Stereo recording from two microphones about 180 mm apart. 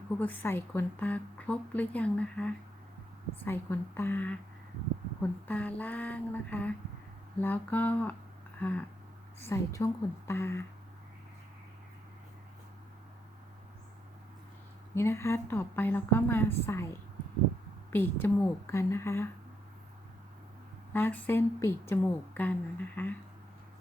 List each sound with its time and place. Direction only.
0.2 s a woman's voice: 10° left (ahead or behind)
5.5 s a woman's voice: 10° left (ahead or behind)
9.4 s a woman's voice: 15° left (ahead or behind)
14.9 s a woman's voice: 15° left (ahead or behind)
17.9 s a woman's voice: 10° left (ahead or behind)
20.9 s a woman's voice: 10° left (ahead or behind)